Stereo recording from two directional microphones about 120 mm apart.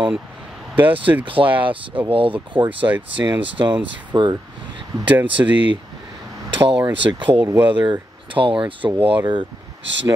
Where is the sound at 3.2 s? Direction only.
25° right (ahead or behind).